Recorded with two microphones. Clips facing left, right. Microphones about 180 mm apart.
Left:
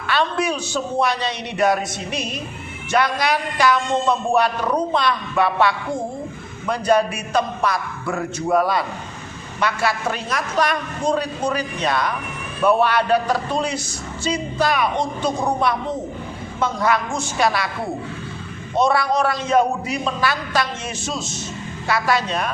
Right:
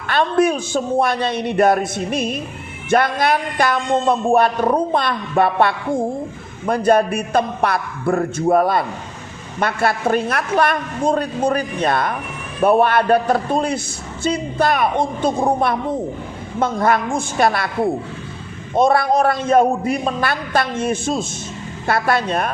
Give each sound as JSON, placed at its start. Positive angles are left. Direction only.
{"t": 0.1, "sound": "a man's voice", "side_deg": -50}
{"t": 18.8, "sound": "a man's voice", "side_deg": -50}